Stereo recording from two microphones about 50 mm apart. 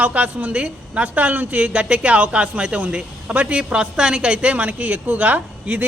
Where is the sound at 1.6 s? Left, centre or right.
Right.